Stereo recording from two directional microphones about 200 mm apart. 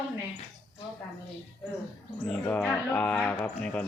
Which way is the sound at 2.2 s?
5° left (ahead or behind).